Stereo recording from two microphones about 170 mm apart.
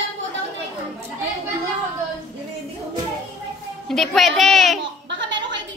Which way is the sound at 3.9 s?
Centre (ahead or behind).